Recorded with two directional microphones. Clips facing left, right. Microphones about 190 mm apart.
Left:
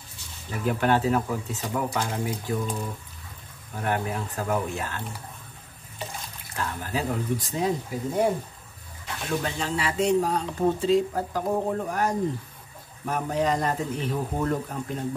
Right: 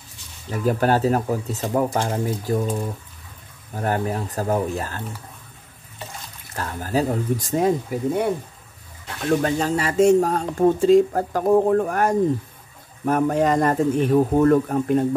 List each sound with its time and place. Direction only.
0.5 s speech: 40° right (ahead or behind)
3.7 s speech: 40° right (ahead or behind)
6.5 s speech: 40° right (ahead or behind)
9.3 s speech: 45° right (ahead or behind)